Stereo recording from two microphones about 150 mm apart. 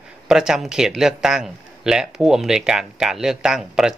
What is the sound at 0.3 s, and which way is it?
Speech, 5° right (ahead or behind).